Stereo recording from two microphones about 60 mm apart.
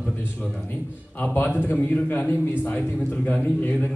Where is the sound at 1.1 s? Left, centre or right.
Left.